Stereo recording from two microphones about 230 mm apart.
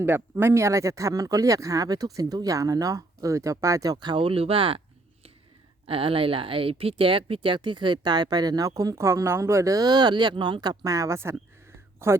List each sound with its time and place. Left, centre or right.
0.0 s speech: centre
5.8 s speech: right